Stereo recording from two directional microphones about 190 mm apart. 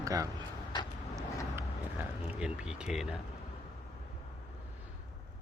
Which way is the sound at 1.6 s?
10° right (ahead or behind).